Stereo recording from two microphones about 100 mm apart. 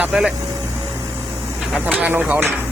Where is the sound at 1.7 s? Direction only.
15° right (ahead or behind).